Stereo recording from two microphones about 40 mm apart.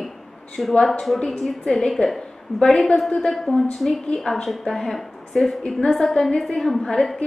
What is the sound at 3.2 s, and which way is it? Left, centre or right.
A woman's voice, centre.